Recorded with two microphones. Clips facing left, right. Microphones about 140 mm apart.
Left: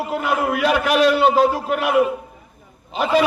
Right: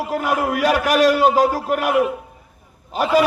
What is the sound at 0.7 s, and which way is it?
Speech, 40° right (ahead or behind).